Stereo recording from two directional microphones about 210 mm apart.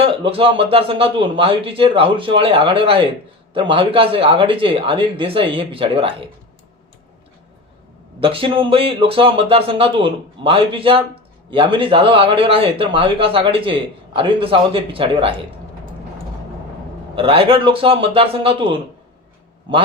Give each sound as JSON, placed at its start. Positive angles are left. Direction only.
{"t": 0.0, "sound": "speech", "side_deg": -25}
{"t": 8.2, "sound": "speech", "side_deg": -25}
{"t": 17.2, "sound": "speech", "side_deg": -25}